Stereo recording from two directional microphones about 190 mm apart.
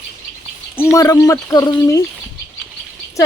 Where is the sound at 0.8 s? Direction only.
15° left (ahead or behind).